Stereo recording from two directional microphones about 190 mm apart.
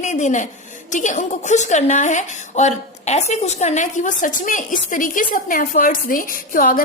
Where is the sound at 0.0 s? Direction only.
40° left (ahead or behind).